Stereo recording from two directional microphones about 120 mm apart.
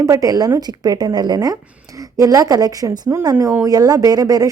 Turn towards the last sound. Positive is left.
turn(degrees=-30)  # may be behind; listen again after turning